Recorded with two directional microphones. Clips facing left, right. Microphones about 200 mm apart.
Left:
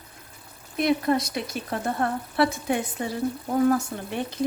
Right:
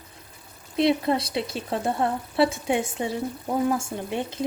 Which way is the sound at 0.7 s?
25° right (ahead or behind).